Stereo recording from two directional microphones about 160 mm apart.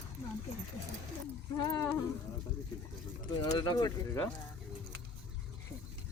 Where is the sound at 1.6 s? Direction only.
20° left (ahead or behind).